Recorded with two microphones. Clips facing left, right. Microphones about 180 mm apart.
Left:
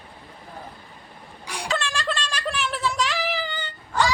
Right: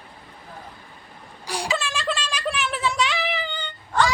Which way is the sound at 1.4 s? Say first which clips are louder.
Right 5 dB; 35° right (ahead or behind).